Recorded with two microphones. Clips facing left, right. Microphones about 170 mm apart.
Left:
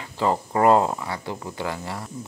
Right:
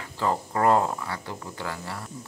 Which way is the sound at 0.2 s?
20° left (ahead or behind).